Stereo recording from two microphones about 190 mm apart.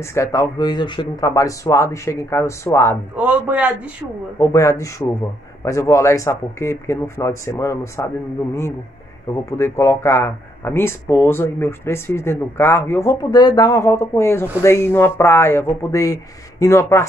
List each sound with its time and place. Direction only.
0.0 s speech: 15° left (ahead or behind)
3.2 s a man's voice: 10° right (ahead or behind)
4.4 s speech: 15° left (ahead or behind)
9.5 s speech: 15° left (ahead or behind)